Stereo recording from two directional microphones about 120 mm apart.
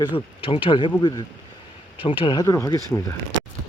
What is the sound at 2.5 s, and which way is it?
Speech, 25° left (ahead or behind).